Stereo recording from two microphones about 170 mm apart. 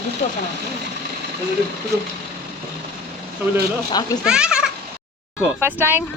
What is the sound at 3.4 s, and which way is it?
Speech, 10° right (ahead or behind).